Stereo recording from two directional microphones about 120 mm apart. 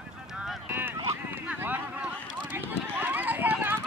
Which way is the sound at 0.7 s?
15° right (ahead or behind).